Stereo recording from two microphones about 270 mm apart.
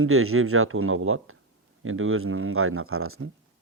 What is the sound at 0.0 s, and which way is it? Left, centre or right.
Speech, right.